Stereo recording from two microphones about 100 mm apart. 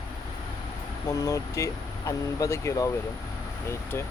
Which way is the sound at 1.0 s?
35° left (ahead or behind).